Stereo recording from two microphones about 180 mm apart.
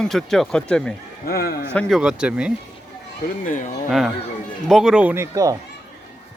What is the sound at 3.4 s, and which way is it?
Speech, 45° left (ahead or behind).